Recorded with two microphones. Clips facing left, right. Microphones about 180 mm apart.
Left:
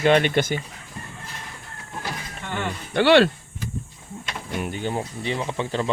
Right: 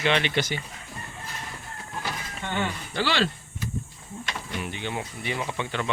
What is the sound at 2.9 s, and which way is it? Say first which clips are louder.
Speech: left 11 dB; 60° left (ahead or behind).